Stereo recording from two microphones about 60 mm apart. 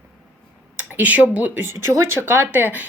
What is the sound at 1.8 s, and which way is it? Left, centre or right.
A woman's voice, right.